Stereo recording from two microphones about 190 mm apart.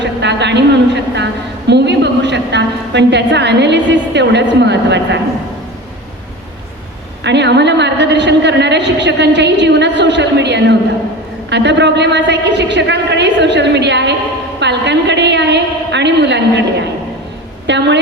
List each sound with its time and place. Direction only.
0.0 s a man's voice: 65° right (ahead or behind)
7.3 s a woman's voice: 65° right (ahead or behind)
17.7 s a woman's voice: 65° right (ahead or behind)